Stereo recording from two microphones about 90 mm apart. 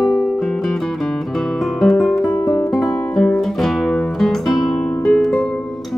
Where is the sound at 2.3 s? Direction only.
30° left (ahead or behind).